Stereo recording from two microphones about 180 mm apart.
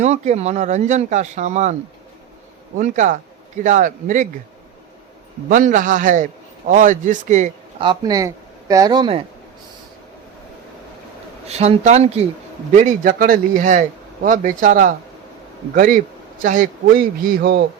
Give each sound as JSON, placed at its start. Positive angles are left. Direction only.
{"t": 0.0, "sound": "speech", "side_deg": -40}
{"t": 2.7, "sound": "a man's voice", "side_deg": -45}
{"t": 5.5, "sound": "a man's voice", "side_deg": -45}
{"t": 7.8, "sound": "speech", "side_deg": -25}
{"t": 11.4, "sound": "a man's voice", "side_deg": -35}